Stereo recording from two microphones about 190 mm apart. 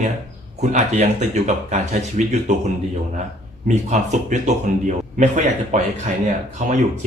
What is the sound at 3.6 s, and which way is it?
Speech, 40° right (ahead or behind).